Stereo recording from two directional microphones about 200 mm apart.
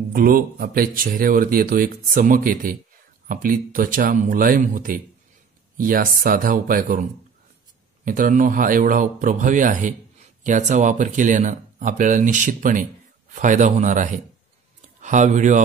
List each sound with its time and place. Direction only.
0.1 s speech: 45° right (ahead or behind)